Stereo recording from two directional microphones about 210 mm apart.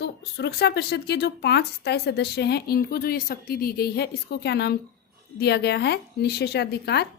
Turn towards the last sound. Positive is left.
turn(degrees=50)  # may be behind; listen again after turning